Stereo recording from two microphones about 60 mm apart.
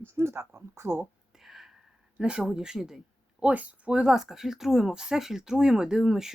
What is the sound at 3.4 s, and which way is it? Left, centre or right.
Speech, right.